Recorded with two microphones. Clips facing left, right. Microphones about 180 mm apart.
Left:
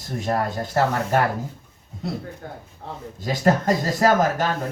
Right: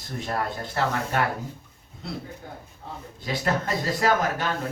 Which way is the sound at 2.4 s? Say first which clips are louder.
Left 4 dB; 60° left (ahead or behind).